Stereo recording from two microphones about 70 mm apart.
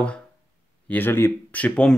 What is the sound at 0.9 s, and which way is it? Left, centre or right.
Speech, left.